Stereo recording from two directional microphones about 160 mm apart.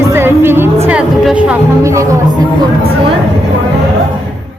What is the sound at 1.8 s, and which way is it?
Speech, 20° right (ahead or behind).